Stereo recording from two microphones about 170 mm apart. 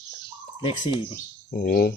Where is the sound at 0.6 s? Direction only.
30° left (ahead or behind).